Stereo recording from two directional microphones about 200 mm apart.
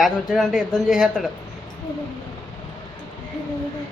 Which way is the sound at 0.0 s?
Centre (ahead or behind).